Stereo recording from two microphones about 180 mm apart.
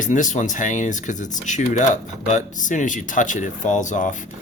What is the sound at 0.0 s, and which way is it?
Speech, 45° left (ahead or behind).